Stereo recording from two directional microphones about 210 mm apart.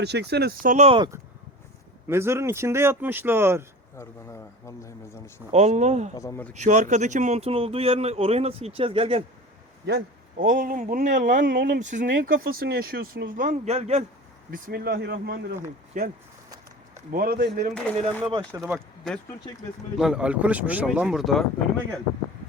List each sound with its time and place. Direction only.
0.0 s speech: 55° right (ahead or behind); by 3.7 s 10° right (ahead or behind)
3.9 s a man's voice: 15° left (ahead or behind)
5.5 s a man's voice: 30° right (ahead or behind)
6.1 s a man's voice: 15° left (ahead or behind)
6.5 s speech: 35° right (ahead or behind)
9.8 s a man's voice: 45° right (ahead or behind)
14.5 s speech: 50° right (ahead or behind)
15.9 s a man's voice: 40° right (ahead or behind)
18.2 s speech: 20° right (ahead or behind)
18.6 s speech: centre (ahead or behind)